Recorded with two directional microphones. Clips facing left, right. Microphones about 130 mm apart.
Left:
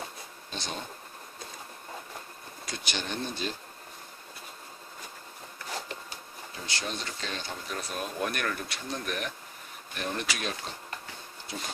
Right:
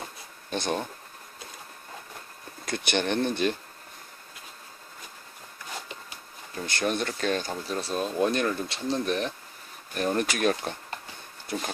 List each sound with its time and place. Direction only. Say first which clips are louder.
0.5 s speech: right 10 dB; 55° right (ahead or behind)
2.6 s speech: right 9 dB; 55° right (ahead or behind)
6.5 s speech: right 8 dB; 55° right (ahead or behind)
7.7 s speech: right 6 dB; 30° right (ahead or behind)
9.9 s speech: right 7 dB; 45° right (ahead or behind)